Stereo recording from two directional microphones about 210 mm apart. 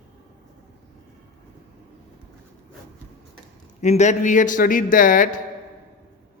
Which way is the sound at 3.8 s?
35° left (ahead or behind).